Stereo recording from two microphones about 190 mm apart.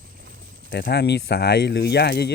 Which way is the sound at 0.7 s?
55° left (ahead or behind).